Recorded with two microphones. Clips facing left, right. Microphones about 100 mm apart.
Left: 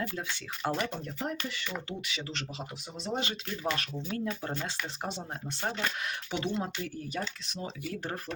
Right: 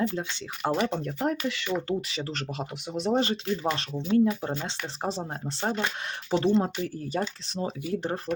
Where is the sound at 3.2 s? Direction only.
35° right (ahead or behind); by 4.7 s 20° right (ahead or behind).